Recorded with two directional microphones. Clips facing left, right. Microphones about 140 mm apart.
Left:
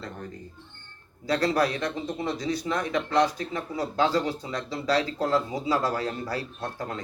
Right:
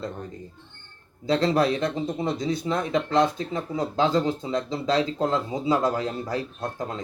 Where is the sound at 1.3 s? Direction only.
25° right (ahead or behind).